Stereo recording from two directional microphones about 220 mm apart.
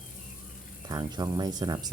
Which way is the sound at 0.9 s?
20° right (ahead or behind).